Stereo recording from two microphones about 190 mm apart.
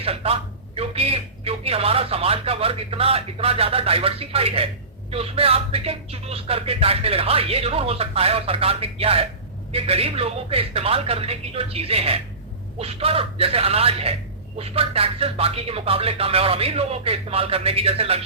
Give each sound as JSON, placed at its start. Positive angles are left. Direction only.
{"t": 0.0, "sound": "a man's voice", "side_deg": -30}